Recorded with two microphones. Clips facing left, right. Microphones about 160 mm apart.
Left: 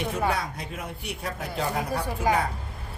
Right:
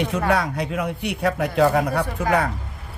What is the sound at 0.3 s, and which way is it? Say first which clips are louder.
A man's voice: right 7 dB; 75° right (ahead or behind).